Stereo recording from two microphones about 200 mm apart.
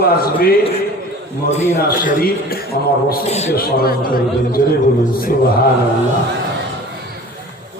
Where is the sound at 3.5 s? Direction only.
50° left (ahead or behind).